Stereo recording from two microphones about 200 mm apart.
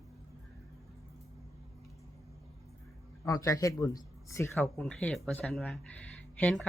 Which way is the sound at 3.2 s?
15° left (ahead or behind).